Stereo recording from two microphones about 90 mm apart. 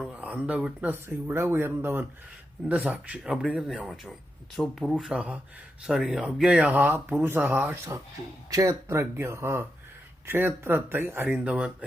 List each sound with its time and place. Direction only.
0.0 s speech: 15° right (ahead or behind)
2.9 s speech: 10° right (ahead or behind)
8.4 s speech: 40° right (ahead or behind); by 11.9 s 10° right (ahead or behind)